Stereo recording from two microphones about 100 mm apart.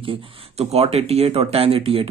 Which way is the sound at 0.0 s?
65° right (ahead or behind).